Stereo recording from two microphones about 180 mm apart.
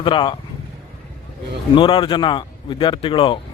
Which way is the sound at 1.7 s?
30° left (ahead or behind).